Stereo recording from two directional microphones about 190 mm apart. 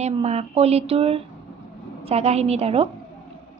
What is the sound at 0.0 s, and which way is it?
A woman's voice, 35° right (ahead or behind).